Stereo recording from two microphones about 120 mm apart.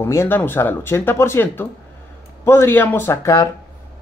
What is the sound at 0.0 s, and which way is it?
Speech, 20° left (ahead or behind).